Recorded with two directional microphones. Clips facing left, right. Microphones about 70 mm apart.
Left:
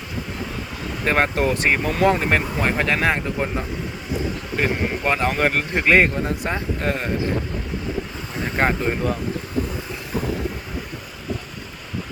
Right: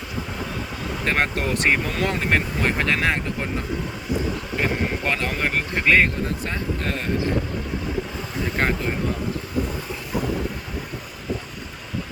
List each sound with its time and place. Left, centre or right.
1.0 s speech: centre
5.0 s speech: centre
5.3 s speech: left
5.7 s speech: left
8.6 s speech: centre